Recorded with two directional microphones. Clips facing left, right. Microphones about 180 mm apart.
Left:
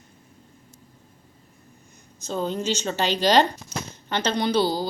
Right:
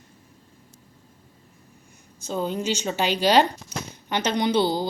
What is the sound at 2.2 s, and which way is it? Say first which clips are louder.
A woman's voice: even; 10° right (ahead or behind).